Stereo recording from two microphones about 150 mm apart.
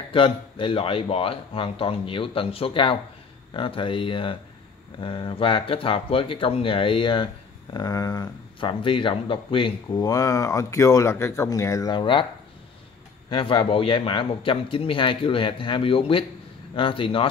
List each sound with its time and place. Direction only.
0.1 s a man's voice: 35° left (ahead or behind)
9.8 s speech: 25° left (ahead or behind)
13.3 s a man's voice: 35° left (ahead or behind)